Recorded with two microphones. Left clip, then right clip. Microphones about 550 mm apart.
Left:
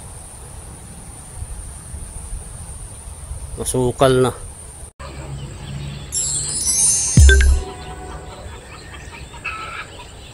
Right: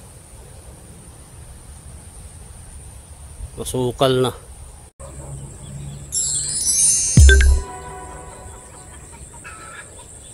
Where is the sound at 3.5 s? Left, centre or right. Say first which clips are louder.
Left 3 dB; right.